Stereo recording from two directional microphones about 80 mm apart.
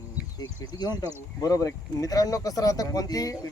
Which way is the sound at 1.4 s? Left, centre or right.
Left.